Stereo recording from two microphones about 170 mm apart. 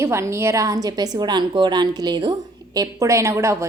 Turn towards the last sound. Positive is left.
turn(degrees=-15)  # may be behind; listen again after turning